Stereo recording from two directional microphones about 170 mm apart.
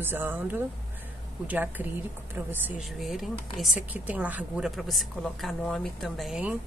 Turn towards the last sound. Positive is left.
turn(degrees=-5)  # may be behind; listen again after turning